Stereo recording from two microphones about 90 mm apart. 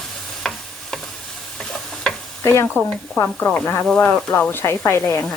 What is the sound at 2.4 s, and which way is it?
Stir, 30° left (ahead or behind).